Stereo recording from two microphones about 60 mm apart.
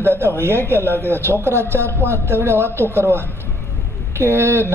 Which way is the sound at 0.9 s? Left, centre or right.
Left.